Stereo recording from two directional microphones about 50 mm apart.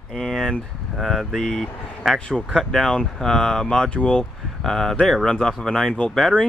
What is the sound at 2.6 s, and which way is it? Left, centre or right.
Speech, centre.